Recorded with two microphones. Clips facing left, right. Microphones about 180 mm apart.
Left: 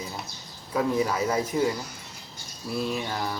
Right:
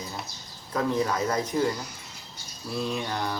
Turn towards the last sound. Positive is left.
turn(degrees=5)  # may be behind; listen again after turning